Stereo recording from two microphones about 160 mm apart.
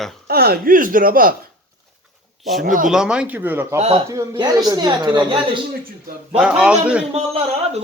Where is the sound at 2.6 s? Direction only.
55° right (ahead or behind).